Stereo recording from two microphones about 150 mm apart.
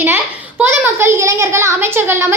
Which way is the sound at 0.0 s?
10° right (ahead or behind).